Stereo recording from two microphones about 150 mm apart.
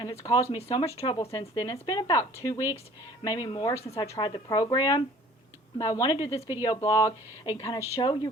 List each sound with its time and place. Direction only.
0.0 s speech: 20° left (ahead or behind)